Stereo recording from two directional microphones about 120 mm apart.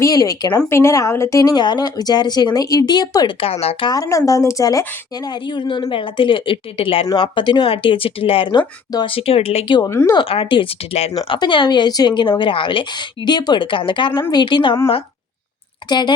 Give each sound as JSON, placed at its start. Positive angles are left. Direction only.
{"t": 0.0, "sound": "a woman's voice", "side_deg": 30}
{"t": 3.4, "sound": "speech", "side_deg": 55}
{"t": 3.8, "sound": "a woman's voice", "side_deg": 30}
{"t": 9.1, "sound": "speech", "side_deg": 55}
{"t": 9.9, "sound": "speech", "side_deg": 20}
{"t": 10.2, "sound": "a woman's voice", "side_deg": 50}
{"t": 15.9, "sound": "a woman's voice", "side_deg": 40}